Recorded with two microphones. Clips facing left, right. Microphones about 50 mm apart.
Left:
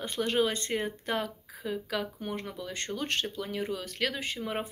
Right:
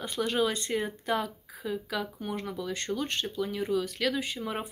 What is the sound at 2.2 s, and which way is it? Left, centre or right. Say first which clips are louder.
Speech: right 3 dB; left.